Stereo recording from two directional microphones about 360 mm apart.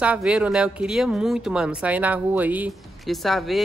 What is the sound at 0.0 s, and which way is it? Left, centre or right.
Speech, centre.